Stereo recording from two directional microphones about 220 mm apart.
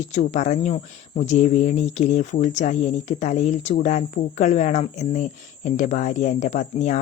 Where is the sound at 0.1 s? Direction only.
35° left (ahead or behind).